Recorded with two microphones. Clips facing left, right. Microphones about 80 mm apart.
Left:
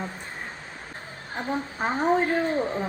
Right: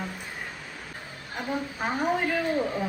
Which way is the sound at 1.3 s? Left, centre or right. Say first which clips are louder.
Left 2 dB; left.